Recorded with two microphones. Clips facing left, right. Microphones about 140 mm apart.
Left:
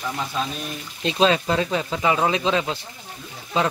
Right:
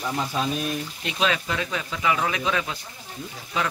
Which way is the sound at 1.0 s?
30° left (ahead or behind).